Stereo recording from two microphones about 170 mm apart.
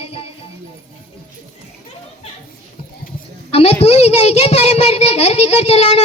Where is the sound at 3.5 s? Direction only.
35° left (ahead or behind).